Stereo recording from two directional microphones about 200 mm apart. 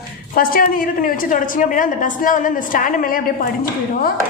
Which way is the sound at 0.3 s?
45° left (ahead or behind).